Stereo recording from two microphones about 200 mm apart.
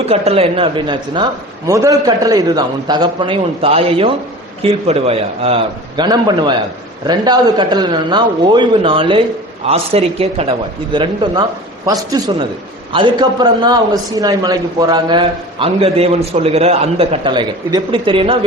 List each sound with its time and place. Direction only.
0.0 s a man's voice: 30° right (ahead or behind)